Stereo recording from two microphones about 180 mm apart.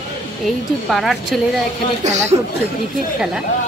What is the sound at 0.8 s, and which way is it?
Speech, centre (ahead or behind).